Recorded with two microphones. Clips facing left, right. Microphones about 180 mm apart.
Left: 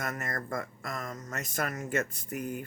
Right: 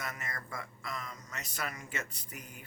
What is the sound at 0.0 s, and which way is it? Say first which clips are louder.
Speech: left 7 dB; 50° left (ahead or behind).